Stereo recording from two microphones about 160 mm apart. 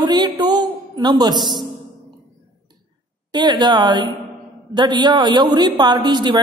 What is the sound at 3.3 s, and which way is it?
A woman's voice, 25° right (ahead or behind).